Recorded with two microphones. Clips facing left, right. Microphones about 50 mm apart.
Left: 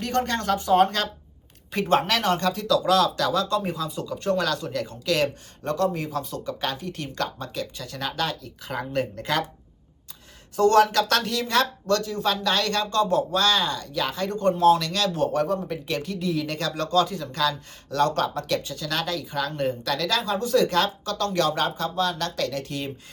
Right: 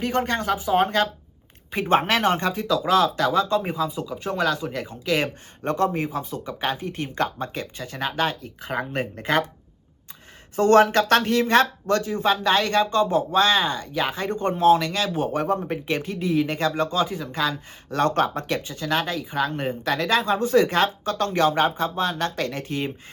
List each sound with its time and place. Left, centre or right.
0.0 s speech: centre
10.5 s speech: right